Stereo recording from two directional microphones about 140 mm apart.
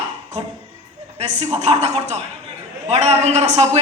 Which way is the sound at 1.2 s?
50° right (ahead or behind).